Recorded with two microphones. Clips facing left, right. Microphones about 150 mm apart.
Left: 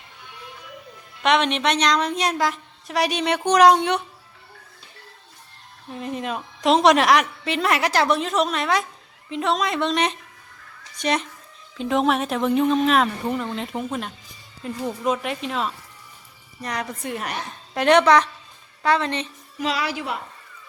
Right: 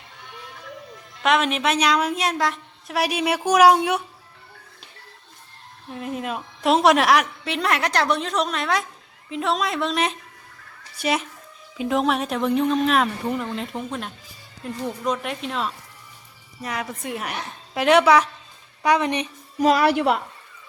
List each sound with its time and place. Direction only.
1.2 s a woman's voice: centre (ahead or behind)
5.9 s a woman's voice: centre (ahead or behind)
19.5 s a woman's voice: 45° right (ahead or behind); by 20.2 s 60° right (ahead or behind)